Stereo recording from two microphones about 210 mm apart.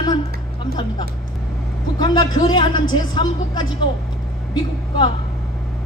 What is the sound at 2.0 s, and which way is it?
Speech, 20° left (ahead or behind).